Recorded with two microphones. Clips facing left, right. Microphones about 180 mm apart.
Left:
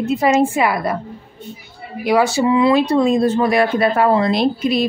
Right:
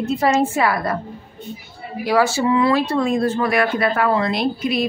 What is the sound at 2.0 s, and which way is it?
Speech, 15° left (ahead or behind).